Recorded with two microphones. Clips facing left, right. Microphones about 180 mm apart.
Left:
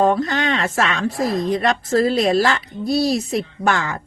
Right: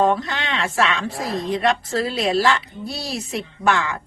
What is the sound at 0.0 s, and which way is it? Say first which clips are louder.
Speech: left 3 dB; 45° left (ahead or behind).